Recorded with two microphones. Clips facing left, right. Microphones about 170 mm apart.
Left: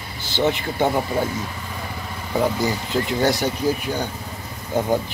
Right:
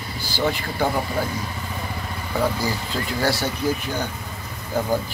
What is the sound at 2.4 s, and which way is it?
Speech, 20° left (ahead or behind).